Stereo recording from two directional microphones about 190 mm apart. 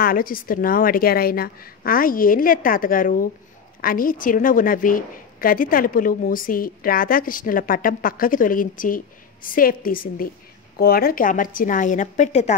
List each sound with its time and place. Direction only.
0.0 s a woman's voice: 50° left (ahead or behind)